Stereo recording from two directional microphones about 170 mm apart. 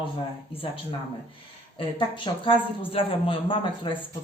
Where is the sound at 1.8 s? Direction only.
30° left (ahead or behind).